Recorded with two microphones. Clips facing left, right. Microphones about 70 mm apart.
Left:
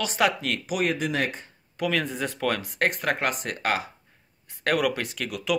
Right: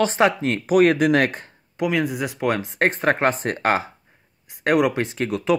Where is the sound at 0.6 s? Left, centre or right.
Right.